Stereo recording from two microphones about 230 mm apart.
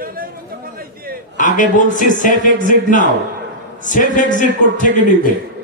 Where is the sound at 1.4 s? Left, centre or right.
Left.